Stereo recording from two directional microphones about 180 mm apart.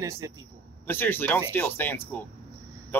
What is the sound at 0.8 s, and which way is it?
Speech, 10° left (ahead or behind).